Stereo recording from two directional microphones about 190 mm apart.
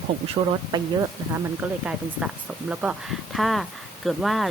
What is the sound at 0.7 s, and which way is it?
Speech, 25° right (ahead or behind).